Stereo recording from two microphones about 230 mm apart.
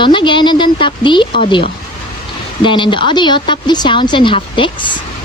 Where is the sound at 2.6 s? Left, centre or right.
Left.